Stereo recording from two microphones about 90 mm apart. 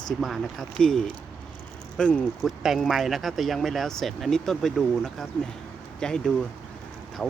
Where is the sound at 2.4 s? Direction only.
Centre (ahead or behind).